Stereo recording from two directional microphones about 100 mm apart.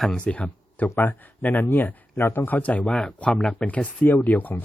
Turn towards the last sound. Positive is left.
turn(degrees=15)  # may be behind; listen again after turning